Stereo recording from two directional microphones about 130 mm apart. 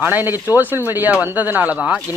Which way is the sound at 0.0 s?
15° right (ahead or behind).